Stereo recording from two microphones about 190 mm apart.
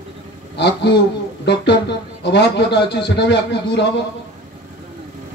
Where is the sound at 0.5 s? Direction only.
65° left (ahead or behind).